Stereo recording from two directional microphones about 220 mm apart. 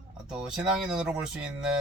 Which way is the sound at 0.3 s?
5° right (ahead or behind).